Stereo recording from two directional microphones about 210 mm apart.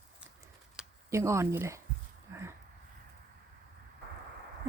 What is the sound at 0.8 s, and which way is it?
Speech, 15° right (ahead or behind).